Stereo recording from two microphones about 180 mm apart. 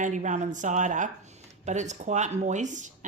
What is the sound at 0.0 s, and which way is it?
Speech, 45° right (ahead or behind).